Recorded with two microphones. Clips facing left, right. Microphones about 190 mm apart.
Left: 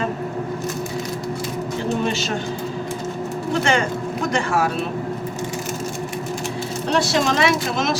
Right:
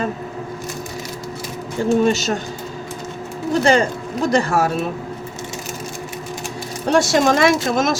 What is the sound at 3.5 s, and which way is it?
Speech, 35° right (ahead or behind).